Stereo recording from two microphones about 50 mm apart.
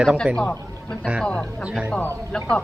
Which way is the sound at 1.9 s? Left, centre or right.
Left.